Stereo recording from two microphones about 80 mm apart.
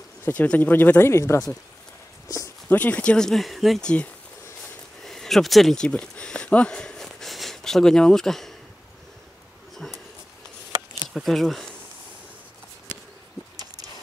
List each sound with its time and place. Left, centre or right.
0.3 s speech: centre; by 1.5 s left
2.2 s a sound: left
2.7 s speech: centre
3.8 s speech: centre
9.8 s a sound: centre
11.1 s speech: centre